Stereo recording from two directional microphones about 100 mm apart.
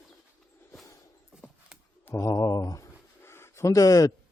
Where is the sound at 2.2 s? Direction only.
35° left (ahead or behind).